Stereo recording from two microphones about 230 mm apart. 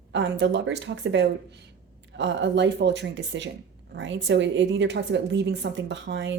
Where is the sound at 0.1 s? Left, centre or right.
Right.